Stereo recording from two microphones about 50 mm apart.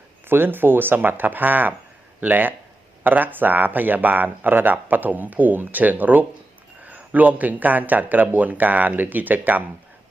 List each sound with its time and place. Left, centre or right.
0.3 s speech: right